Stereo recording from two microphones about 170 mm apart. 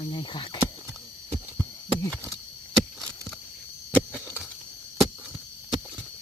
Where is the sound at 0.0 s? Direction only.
30° left (ahead or behind).